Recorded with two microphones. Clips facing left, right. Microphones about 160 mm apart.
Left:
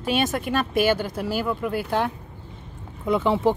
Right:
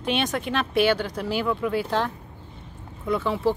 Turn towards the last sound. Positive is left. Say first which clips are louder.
# left 3 dB
turn(degrees=20)  # may be behind; listen again after turning